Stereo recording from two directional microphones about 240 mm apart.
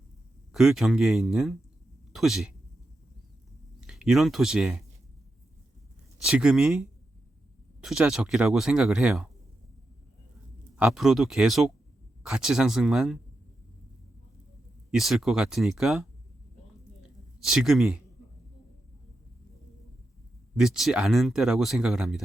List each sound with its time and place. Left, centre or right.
0.5 s speech: centre
3.8 s speech: centre
6.2 s speech: centre
10.8 s speech: centre
14.8 s speech: centre
17.4 s speech: centre
20.6 s speech: centre